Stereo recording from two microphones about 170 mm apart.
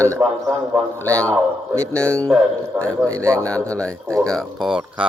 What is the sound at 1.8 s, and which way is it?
Speech, 5° left (ahead or behind).